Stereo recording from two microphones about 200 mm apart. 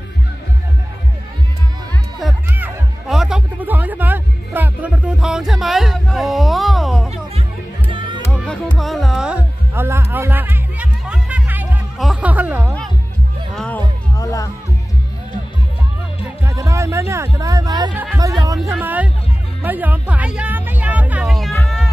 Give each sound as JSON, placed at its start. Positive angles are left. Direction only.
{"t": 2.1, "sound": "music", "side_deg": -5}
{"t": 8.2, "sound": "music", "side_deg": 5}
{"t": 13.6, "sound": "music", "side_deg": 10}
{"t": 16.3, "sound": "music", "side_deg": -15}
{"t": 17.9, "sound": "speech", "side_deg": -10}
{"t": 19.6, "sound": "music", "side_deg": -10}